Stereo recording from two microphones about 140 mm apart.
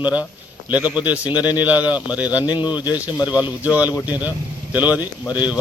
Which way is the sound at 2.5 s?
30° left (ahead or behind).